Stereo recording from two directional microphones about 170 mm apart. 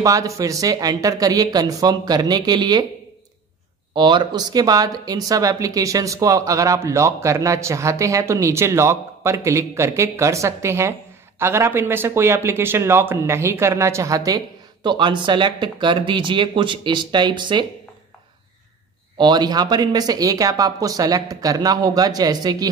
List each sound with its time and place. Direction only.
0.0 s speech: 20° right (ahead or behind)
3.9 s speech: 25° right (ahead or behind)
19.1 s speech: 25° right (ahead or behind)